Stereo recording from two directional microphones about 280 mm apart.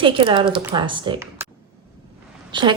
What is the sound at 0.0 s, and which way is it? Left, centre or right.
Speech, centre.